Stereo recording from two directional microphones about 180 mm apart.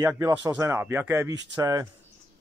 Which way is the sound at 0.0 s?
15° right (ahead or behind).